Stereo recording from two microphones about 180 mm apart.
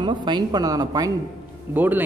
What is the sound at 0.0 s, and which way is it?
Speech, 25° right (ahead or behind).